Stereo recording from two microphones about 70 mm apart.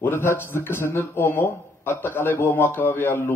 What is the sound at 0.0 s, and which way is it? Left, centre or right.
A man's voice, left.